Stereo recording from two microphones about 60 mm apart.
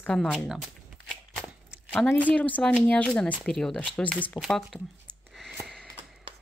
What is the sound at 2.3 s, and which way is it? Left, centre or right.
Speech, left.